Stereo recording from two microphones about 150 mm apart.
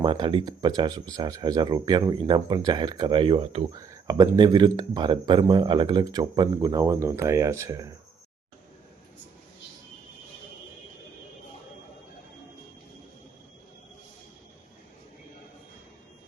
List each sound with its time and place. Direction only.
0.0 s speech: 30° right (ahead or behind)
3.7 s speech: 25° right (ahead or behind)